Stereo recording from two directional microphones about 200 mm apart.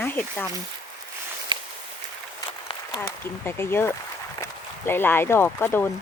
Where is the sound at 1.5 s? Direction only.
25° right (ahead or behind).